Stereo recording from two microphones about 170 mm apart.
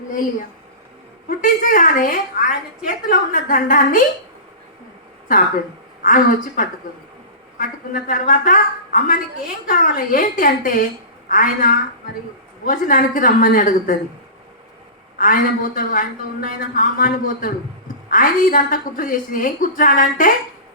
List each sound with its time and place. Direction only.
1.3 s a woman's voice: 55° left (ahead or behind)
5.3 s a woman's voice: 50° left (ahead or behind)
6.6 s a woman's voice: 55° left (ahead or behind)
15.2 s a woman's voice: 55° left (ahead or behind)